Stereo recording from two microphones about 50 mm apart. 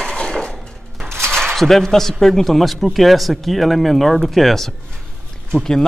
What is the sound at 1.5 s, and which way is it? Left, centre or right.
Speech, centre.